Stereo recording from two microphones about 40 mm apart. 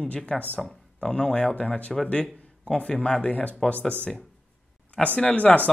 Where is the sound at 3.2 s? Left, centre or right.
Left.